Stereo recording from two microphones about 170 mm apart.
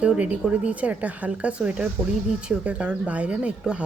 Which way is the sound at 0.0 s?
5° right (ahead or behind).